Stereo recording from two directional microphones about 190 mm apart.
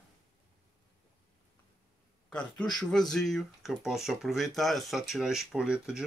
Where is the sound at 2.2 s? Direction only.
5° left (ahead or behind).